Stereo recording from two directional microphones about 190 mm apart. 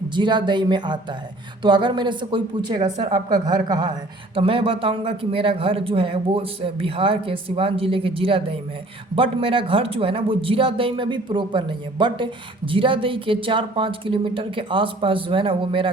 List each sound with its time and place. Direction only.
0.1 s speech: 25° right (ahead or behind)